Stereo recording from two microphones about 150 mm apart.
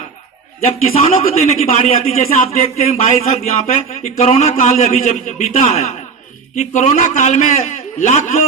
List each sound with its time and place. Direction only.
0.7 s a man's voice: 45° left (ahead or behind)